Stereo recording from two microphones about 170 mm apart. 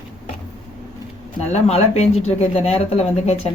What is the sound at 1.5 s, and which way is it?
Speech, 40° left (ahead or behind).